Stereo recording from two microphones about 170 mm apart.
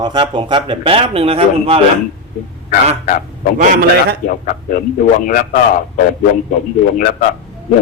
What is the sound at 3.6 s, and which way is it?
Speech, 60° right (ahead or behind).